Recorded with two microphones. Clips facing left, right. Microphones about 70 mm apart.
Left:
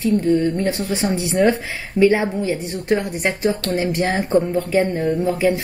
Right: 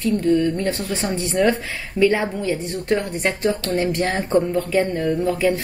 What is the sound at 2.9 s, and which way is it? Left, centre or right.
Speech, centre.